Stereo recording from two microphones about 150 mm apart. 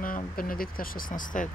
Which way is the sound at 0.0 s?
70° left (ahead or behind).